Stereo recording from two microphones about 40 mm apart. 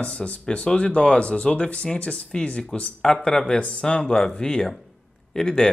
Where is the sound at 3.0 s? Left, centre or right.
Centre.